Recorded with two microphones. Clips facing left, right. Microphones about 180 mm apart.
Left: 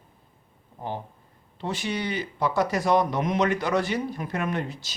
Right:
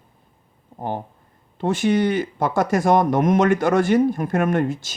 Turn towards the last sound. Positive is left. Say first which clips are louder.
# right 9 dB
turn(degrees=-50)  # may be behind; listen again after turning